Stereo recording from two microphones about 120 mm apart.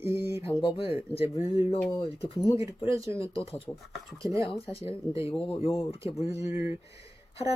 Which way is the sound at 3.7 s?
30° left (ahead or behind).